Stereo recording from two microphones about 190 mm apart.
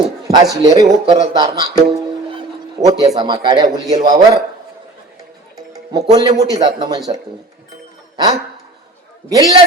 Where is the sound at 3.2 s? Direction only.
25° right (ahead or behind).